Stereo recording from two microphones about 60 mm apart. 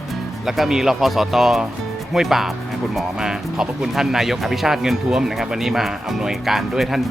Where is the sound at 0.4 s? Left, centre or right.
Centre.